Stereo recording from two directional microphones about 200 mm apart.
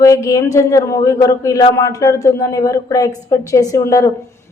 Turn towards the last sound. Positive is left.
turn(degrees=15)  # may be behind; listen again after turning